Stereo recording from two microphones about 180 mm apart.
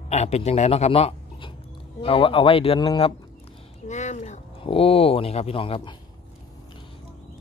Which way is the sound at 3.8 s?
40° left (ahead or behind).